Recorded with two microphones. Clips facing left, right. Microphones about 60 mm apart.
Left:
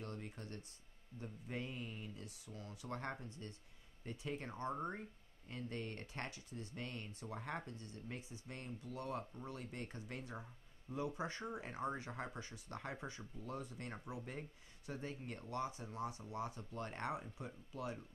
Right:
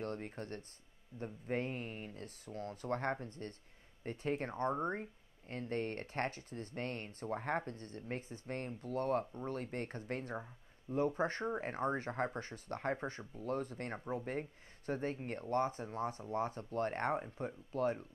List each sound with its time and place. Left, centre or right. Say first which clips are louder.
0.0 s speech: right 7 dB; right
10.3 s speech: right 7 dB; right
11.0 s speech: right 8 dB; right